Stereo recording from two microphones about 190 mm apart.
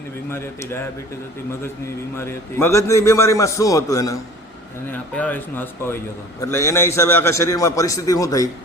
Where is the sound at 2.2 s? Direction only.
15° left (ahead or behind).